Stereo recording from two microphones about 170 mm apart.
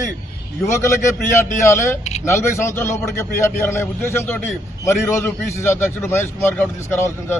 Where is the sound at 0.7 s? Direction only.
15° left (ahead or behind).